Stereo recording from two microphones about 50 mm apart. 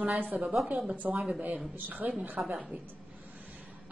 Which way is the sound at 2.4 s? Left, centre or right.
Right.